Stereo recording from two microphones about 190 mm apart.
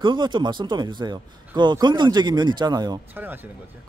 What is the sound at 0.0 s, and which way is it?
Speech, 25° right (ahead or behind).